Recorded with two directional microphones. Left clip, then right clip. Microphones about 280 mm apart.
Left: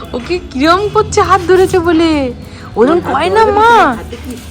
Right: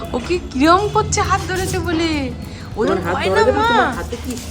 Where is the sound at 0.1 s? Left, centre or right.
Centre.